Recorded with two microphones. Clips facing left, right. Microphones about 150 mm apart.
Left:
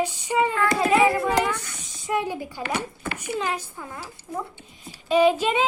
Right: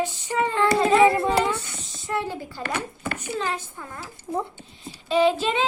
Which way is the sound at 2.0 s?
15° left (ahead or behind).